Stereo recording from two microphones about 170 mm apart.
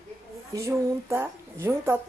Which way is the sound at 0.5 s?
15° right (ahead or behind).